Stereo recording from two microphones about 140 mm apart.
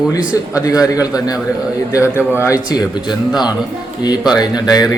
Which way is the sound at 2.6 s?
30° left (ahead or behind).